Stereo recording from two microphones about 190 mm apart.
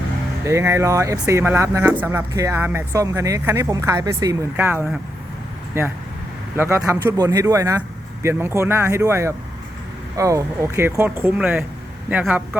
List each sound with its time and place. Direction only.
0.4 s speech: 15° right (ahead or behind)